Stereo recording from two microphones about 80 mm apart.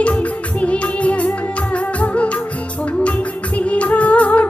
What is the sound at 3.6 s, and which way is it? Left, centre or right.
Music, centre.